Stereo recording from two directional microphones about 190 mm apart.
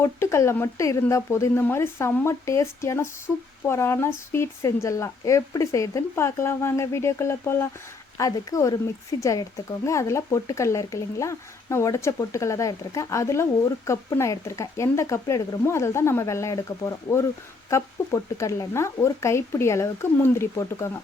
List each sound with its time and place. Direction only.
0.0 s speech: 15° left (ahead or behind)